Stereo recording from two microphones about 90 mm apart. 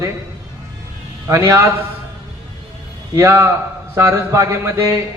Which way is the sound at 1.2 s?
35° right (ahead or behind).